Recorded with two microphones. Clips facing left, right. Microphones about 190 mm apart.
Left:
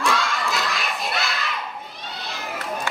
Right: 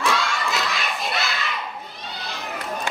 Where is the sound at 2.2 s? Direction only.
Centre (ahead or behind).